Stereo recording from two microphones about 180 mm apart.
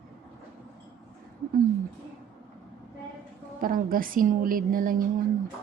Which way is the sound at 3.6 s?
50° right (ahead or behind).